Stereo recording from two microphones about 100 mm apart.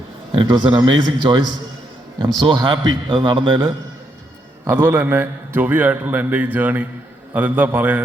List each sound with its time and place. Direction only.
0.4 s a man's voice: 45° right (ahead or behind)
4.6 s a man's voice: 20° right (ahead or behind)